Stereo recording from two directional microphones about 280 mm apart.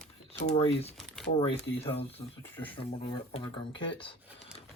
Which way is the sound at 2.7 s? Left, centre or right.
Centre.